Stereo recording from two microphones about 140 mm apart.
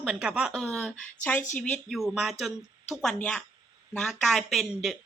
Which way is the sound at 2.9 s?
5° left (ahead or behind).